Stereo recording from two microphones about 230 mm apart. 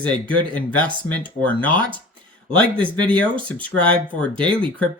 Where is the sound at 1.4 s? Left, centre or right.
Centre.